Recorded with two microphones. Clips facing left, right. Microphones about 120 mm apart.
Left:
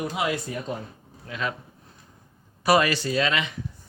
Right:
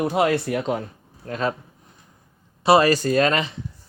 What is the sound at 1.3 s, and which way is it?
Speech, 40° right (ahead or behind).